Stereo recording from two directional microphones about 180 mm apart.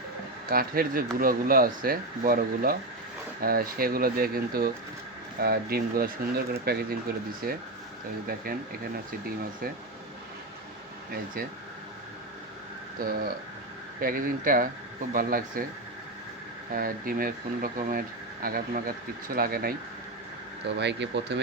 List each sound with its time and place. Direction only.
0.4 s speech: 55° right (ahead or behind)
13.0 s speech: 55° right (ahead or behind)
16.7 s speech: 55° right (ahead or behind)
20.7 s speech: 70° right (ahead or behind)